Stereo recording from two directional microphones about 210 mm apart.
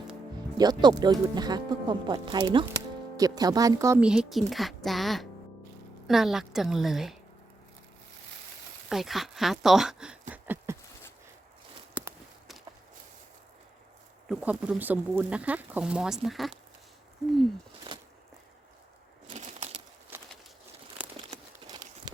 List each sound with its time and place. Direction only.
0.5 s speech: 20° right (ahead or behind)
4.0 s speech: 5° right (ahead or behind)
8.9 s speech: centre (ahead or behind)
11.9 s walk: 5° right (ahead or behind)
14.3 s speech: 5° right (ahead or behind)
17.9 s walk: 20° right (ahead or behind)
19.3 s a sound: 30° right (ahead or behind)
20.1 s bird: 10° right (ahead or behind)
21.0 s crumpling: 20° right (ahead or behind)